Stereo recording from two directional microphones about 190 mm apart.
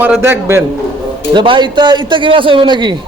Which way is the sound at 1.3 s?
25° right (ahead or behind).